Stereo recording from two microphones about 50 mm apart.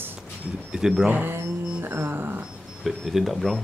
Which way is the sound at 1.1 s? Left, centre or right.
Right.